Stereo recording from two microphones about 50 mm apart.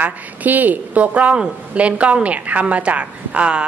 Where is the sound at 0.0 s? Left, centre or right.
Right.